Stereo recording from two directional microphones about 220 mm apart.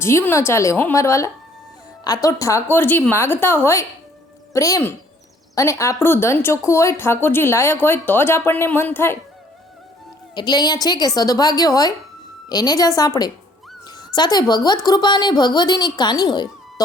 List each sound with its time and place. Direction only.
0.0 s speech: 10° left (ahead or behind)
10.3 s a woman's voice: 20° left (ahead or behind)